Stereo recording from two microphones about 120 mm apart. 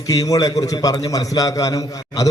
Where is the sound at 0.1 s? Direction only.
30° left (ahead or behind).